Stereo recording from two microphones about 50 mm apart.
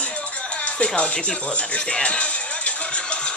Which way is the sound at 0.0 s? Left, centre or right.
Left.